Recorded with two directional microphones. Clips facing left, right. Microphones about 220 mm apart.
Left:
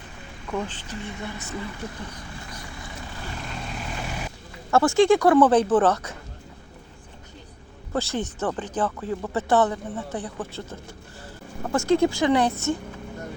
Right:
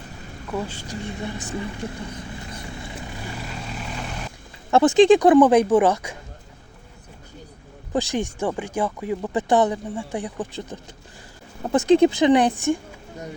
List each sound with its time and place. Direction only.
0.5 s speech: 10° right (ahead or behind)
2.5 s vehicle: 25° right (ahead or behind)
3.5 s vehicle: centre (ahead or behind)
4.7 s speech: 20° right (ahead or behind)
7.9 s speech: 15° right (ahead or behind)